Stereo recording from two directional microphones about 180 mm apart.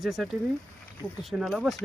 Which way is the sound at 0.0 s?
Centre (ahead or behind).